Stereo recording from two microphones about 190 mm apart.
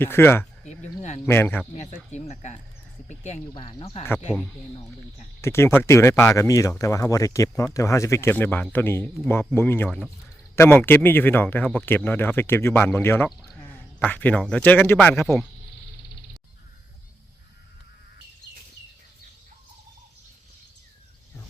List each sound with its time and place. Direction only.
0.0 s speech: 10° left (ahead or behind)
2.0 s speech: 35° left (ahead or behind)
3.5 s speech: 25° left (ahead or behind)
5.4 s speech: 15° left (ahead or behind)